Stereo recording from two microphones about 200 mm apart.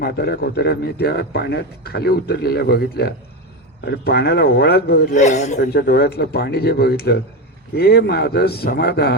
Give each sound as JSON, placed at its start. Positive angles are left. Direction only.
{"t": 0.0, "sound": "a man's voice", "side_deg": 50}
{"t": 5.1, "sound": "a man's voice", "side_deg": 35}
{"t": 5.5, "sound": "a man's voice", "side_deg": 55}